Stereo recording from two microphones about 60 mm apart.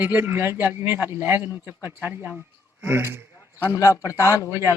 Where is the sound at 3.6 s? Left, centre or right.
Left.